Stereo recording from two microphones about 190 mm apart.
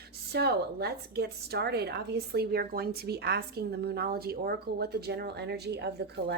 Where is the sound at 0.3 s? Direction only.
55° right (ahead or behind).